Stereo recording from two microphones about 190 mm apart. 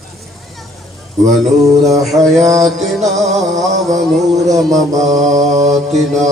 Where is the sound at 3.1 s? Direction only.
35° right (ahead or behind).